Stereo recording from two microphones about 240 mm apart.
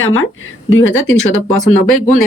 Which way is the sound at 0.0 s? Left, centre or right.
Left.